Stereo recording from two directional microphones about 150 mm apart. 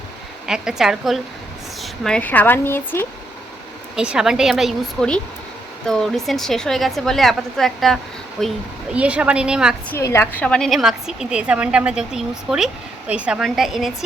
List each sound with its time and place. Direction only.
0.4 s a woman's voice: 5° right (ahead or behind); by 3.1 s 15° left (ahead or behind)
3.9 s a woman's voice: 5° right (ahead or behind)
9.9 s speech: 15° left (ahead or behind)
10.4 s a woman's voice: 5° left (ahead or behind)